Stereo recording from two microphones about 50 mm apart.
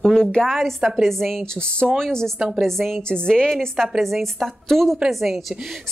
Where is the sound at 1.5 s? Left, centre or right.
Centre.